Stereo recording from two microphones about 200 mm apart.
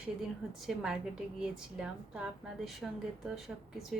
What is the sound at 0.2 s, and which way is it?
A woman's voice, centre (ahead or behind).